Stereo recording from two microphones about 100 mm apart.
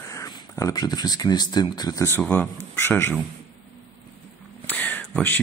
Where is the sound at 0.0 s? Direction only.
35° left (ahead or behind).